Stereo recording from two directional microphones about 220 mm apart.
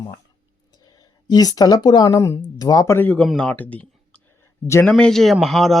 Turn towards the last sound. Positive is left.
turn(degrees=0)  # may be behind; listen again after turning